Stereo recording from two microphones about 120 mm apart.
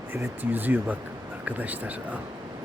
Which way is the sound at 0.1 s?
15° right (ahead or behind).